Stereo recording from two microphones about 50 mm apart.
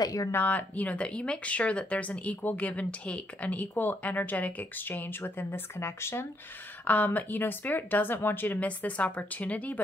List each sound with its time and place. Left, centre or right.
0.3 s speech: left
6.8 s speech: left